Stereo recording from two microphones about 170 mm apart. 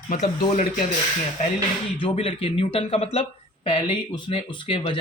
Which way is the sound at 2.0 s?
30° left (ahead or behind).